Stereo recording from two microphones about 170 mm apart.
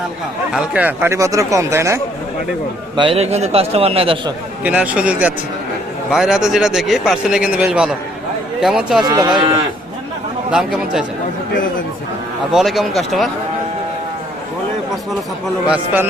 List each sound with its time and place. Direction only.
0.5 s speech: 5° right (ahead or behind)
2.9 s a man's voice: 30° right (ahead or behind)
4.6 s a man's voice: 10° right (ahead or behind)
9.0 s speech: 25° right (ahead or behind)
10.5 s a man's voice: 5° right (ahead or behind)
12.5 s a man's voice: centre (ahead or behind)
15.6 s speech: 10° right (ahead or behind)